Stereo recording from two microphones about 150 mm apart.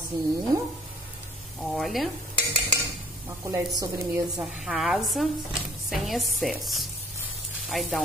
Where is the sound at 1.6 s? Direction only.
Centre (ahead or behind).